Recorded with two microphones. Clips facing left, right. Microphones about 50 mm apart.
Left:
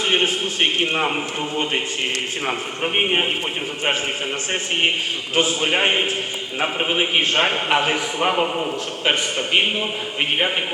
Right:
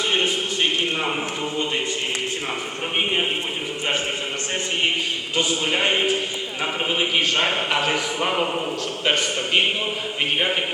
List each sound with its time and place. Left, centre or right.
0.1 s a man's voice: left
2.5 s a man's voice: left
5.3 s a man's voice: left; by 8.7 s centre